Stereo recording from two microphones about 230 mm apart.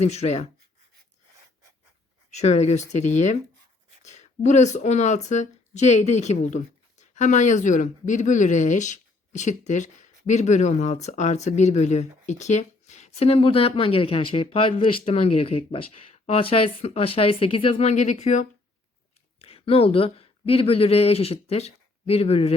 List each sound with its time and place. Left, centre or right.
0.0 s speech: left
2.3 s speech: left